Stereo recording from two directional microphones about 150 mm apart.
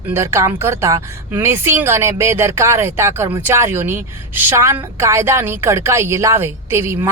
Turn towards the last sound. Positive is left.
turn(degrees=-15)  # may be behind; listen again after turning